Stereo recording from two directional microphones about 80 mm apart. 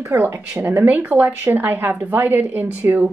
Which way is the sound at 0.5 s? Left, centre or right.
Right.